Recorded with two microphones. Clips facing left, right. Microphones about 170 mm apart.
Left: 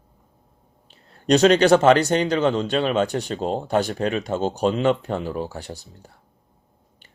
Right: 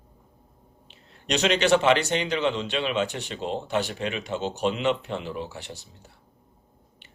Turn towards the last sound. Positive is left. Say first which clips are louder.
# left 5 dB
turn(degrees=40)  # may be behind; listen again after turning